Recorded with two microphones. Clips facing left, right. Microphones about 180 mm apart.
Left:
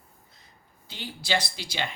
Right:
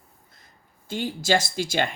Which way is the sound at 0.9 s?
45° right (ahead or behind).